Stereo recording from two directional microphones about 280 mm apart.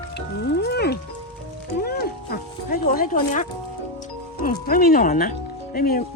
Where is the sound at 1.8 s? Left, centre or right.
Left.